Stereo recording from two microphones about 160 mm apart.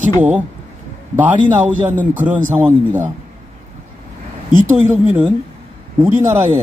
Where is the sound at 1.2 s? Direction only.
10° right (ahead or behind).